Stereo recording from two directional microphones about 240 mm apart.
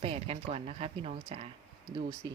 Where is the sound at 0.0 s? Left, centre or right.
Right.